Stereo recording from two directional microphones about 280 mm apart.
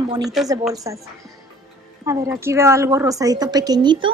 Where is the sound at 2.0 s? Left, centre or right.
Centre.